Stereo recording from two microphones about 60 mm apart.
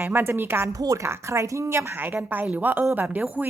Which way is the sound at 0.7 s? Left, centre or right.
Right.